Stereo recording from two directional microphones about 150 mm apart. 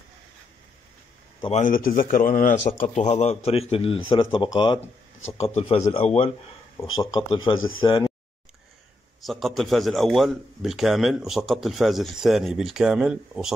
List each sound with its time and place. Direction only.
1.5 s a man's voice: 60° left (ahead or behind); by 4.8 s 35° left (ahead or behind)
5.4 s a man's voice: 45° left (ahead or behind)
7.0 s speech: 35° left (ahead or behind)
9.2 s a man's voice: centre (ahead or behind)